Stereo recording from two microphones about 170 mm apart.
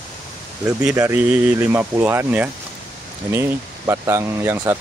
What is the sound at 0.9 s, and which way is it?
Speech, 15° right (ahead or behind).